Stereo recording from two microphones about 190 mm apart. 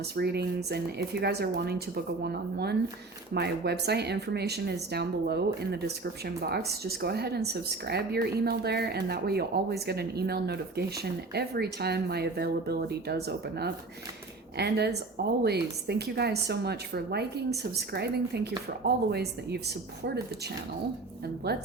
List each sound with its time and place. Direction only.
0.2 s speech: 60° right (ahead or behind)